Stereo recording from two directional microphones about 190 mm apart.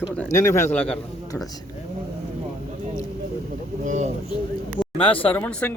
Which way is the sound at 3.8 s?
40° right (ahead or behind).